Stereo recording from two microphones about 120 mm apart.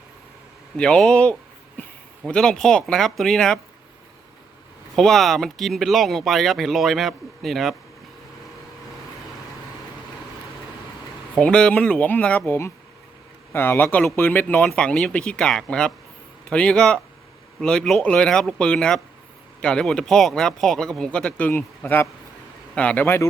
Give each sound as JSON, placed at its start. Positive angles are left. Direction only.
{"t": 0.8, "sound": "speech", "side_deg": 5}
{"t": 4.9, "sound": "speech", "side_deg": 5}
{"t": 11.3, "sound": "speech", "side_deg": 10}
{"t": 23.0, "sound": "speech", "side_deg": 20}